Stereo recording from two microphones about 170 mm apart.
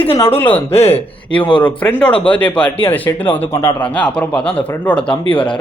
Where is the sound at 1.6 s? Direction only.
10° left (ahead or behind).